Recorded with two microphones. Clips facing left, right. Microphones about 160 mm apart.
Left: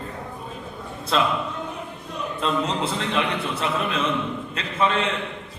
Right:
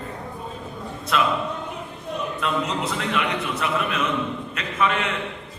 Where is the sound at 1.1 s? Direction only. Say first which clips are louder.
Left 1 dB; 30° left (ahead or behind).